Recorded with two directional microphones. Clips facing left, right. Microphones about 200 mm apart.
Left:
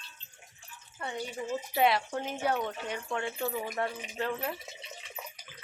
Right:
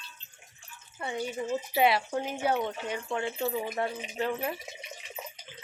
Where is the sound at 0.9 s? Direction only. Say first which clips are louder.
Right 4 dB; 10° right (ahead or behind).